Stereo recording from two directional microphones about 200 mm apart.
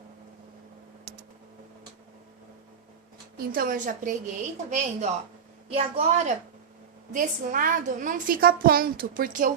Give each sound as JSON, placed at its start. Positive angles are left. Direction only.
{"t": 3.3, "sound": "a woman's voice", "side_deg": -45}
{"t": 7.1, "sound": "a woman's voice", "side_deg": -40}